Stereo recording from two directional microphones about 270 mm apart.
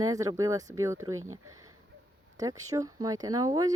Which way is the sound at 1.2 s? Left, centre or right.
Right.